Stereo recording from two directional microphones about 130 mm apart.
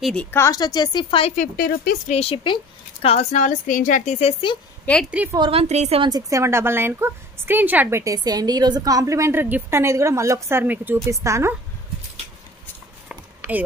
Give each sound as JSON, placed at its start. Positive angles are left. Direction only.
{"t": 0.0, "sound": "a woman's voice", "side_deg": 10}
{"t": 0.4, "sound": "a woman's voice", "side_deg": 30}
{"t": 2.0, "sound": "speech", "side_deg": 50}
{"t": 5.2, "sound": "a woman's voice", "side_deg": -10}
{"t": 5.5, "sound": "a woman's voice", "side_deg": -50}
{"t": 6.0, "sound": "a woman's voice", "side_deg": -30}
{"t": 8.0, "sound": "a woman's voice", "side_deg": -30}
{"t": 13.4, "sound": "a sound", "side_deg": -10}